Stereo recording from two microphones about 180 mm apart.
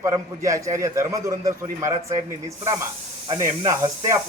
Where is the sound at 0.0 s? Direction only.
15° right (ahead or behind).